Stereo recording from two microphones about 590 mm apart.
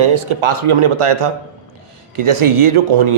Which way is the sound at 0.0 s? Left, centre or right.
Right.